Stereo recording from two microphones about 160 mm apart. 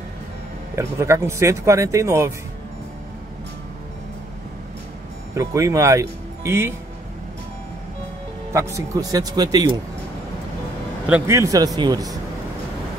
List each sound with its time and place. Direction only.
0.9 s speech: 15° right (ahead or behind)
5.3 s speech: 20° right (ahead or behind)
8.5 s speech: 20° right (ahead or behind)
11.1 s speech: 15° right (ahead or behind)